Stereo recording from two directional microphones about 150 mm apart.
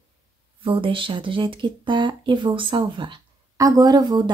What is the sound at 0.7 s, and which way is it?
Speech, 35° right (ahead or behind).